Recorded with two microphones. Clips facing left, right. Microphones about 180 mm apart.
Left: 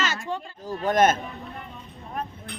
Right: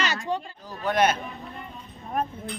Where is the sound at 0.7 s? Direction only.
45° left (ahead or behind).